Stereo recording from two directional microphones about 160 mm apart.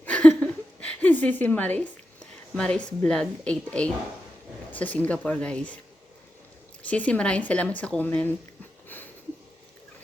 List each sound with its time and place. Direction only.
0.0 s a sound: 10° left (ahead or behind)
1.8 s a woman's voice: 5° left (ahead or behind)
6.8 s speech: 10° left (ahead or behind)